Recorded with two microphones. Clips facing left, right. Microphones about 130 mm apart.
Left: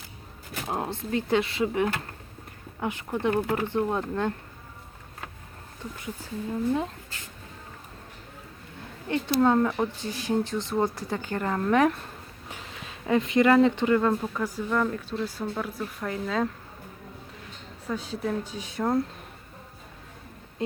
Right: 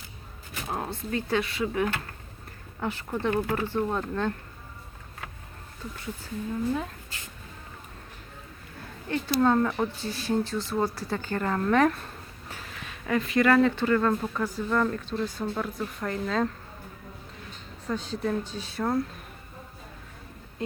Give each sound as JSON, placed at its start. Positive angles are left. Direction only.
{"t": 0.7, "sound": "speech", "side_deg": 20}
{"t": 9.0, "sound": "speech", "side_deg": 20}
{"t": 9.6, "sound": "speech", "side_deg": 5}
{"t": 9.9, "sound": "speech", "side_deg": 15}
{"t": 17.8, "sound": "speech", "side_deg": 10}